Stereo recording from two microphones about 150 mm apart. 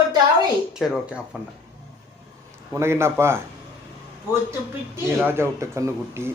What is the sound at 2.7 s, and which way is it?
Speech, 15° right (ahead or behind).